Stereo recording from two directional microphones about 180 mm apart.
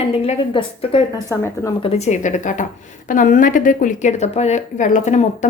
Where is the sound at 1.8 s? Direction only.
35° left (ahead or behind).